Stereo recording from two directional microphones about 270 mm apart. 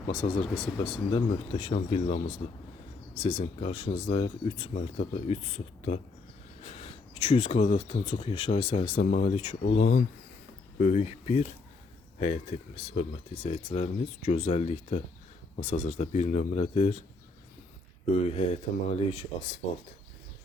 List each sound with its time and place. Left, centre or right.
0.1 s speech: centre
18.1 s speech: left